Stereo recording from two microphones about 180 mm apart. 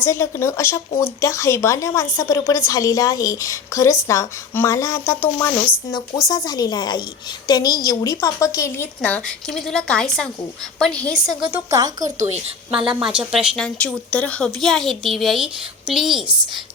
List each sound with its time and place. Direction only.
0.0 s a woman's voice: 15° left (ahead or behind)
6.2 s a woman's voice: 20° left (ahead or behind)
9.0 s a woman's voice: 5° left (ahead or behind)
11.5 s speech: 20° right (ahead or behind)
13.0 s a woman's voice: 5° right (ahead or behind)
13.7 s a woman's voice: 5° left (ahead or behind)